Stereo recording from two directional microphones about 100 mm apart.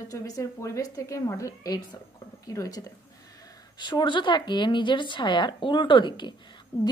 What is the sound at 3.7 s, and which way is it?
A woman's voice, 50° left (ahead or behind).